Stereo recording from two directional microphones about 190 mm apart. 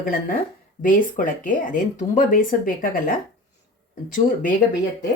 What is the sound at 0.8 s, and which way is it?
Speech, 45° left (ahead or behind).